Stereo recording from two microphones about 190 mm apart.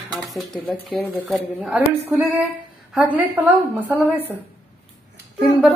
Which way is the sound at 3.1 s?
10° right (ahead or behind).